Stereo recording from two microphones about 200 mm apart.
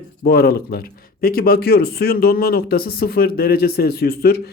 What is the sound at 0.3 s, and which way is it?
A man's voice, 50° left (ahead or behind).